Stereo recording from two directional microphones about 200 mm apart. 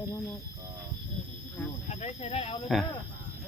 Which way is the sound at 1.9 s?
35° left (ahead or behind).